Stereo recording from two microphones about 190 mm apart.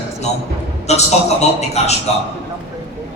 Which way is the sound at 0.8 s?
35° left (ahead or behind).